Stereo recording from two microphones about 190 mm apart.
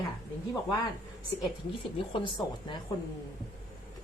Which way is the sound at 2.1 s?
25° left (ahead or behind).